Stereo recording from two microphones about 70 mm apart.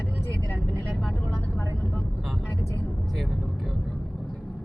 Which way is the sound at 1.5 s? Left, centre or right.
Centre.